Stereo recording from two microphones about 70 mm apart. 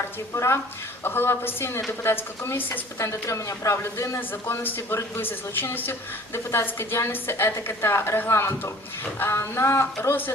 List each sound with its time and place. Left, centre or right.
0.3 s a woman's voice: left
3.0 s speech: left
4.2 s a woman's voice: left